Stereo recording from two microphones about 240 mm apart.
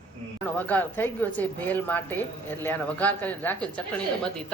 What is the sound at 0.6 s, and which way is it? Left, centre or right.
A woman's voice, centre.